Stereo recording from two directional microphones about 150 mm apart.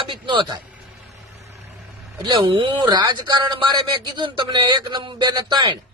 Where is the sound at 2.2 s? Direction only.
30° right (ahead or behind).